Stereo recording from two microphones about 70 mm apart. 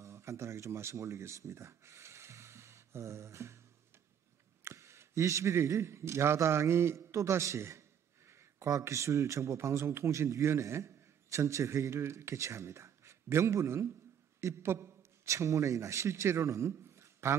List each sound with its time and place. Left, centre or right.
0.0 s speech: right
4.6 s a man's voice: right